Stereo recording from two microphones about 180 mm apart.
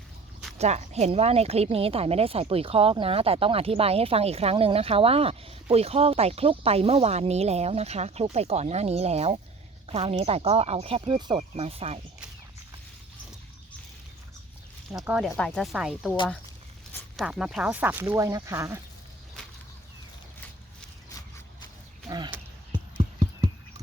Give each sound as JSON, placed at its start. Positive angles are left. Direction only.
{"t": 0.6, "sound": "a woman's voice", "side_deg": -40}
{"t": 14.9, "sound": "speech", "side_deg": -5}
{"t": 17.2, "sound": "speech", "side_deg": -5}
{"t": 22.1, "sound": "horse", "side_deg": -25}